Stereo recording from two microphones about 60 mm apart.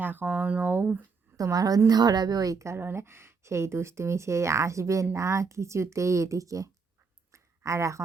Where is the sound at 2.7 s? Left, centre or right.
Right.